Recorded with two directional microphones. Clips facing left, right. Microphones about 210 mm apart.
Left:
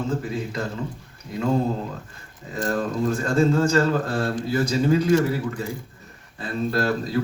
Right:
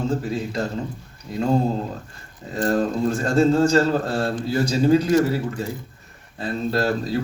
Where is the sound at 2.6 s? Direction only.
35° right (ahead or behind).